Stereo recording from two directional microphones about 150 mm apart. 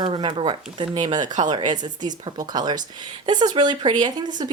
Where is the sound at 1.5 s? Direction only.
30° right (ahead or behind).